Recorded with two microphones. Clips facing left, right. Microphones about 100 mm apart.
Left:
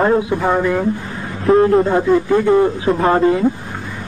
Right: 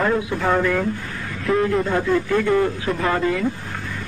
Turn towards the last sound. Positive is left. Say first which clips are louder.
# left 7 dB
turn(degrees=30)  # may be behind; listen again after turning